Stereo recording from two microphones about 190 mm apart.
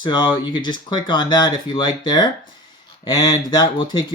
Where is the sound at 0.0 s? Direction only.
25° left (ahead or behind).